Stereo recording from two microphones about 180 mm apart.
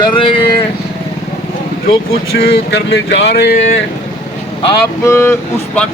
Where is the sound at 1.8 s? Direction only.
60° left (ahead or behind).